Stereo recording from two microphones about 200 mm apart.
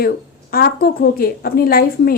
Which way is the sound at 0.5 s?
50° left (ahead or behind).